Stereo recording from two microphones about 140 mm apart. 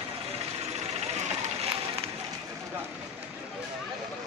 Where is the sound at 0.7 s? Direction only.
50° right (ahead or behind).